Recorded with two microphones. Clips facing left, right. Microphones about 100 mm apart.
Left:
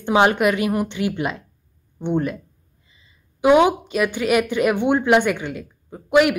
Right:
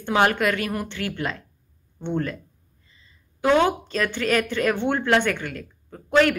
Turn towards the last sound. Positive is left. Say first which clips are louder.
# left 3 dB
turn(degrees=15)  # may be behind; listen again after turning